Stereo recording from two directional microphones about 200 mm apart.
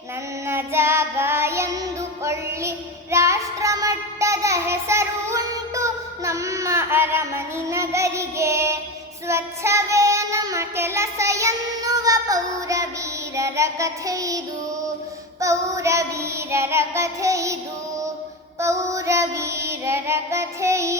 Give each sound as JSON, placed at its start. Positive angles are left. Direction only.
{"t": 0.4, "sound": "child singing", "side_deg": -10}
{"t": 18.6, "sound": "child singing", "side_deg": -15}